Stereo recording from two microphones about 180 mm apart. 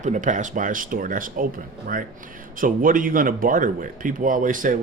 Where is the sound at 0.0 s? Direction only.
45° right (ahead or behind).